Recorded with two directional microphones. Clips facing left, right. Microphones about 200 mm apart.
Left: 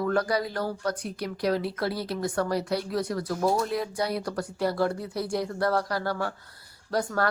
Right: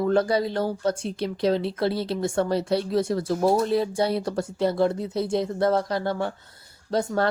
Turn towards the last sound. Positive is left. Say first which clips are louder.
# right 3 dB
turn(degrees=-25)  # may be behind; listen again after turning